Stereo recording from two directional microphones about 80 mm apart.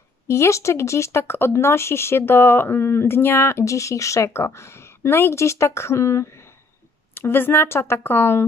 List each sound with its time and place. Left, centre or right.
0.3 s a woman's voice: left